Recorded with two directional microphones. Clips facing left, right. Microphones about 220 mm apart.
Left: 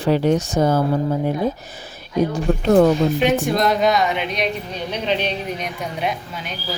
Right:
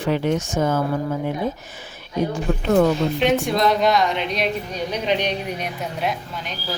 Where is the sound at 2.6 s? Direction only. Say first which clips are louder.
Left 3 dB; 35° left (ahead or behind).